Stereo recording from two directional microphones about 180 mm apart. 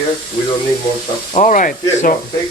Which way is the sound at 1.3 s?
45° left (ahead or behind).